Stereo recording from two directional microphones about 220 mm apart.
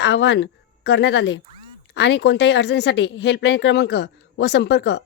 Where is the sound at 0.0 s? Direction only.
55° left (ahead or behind).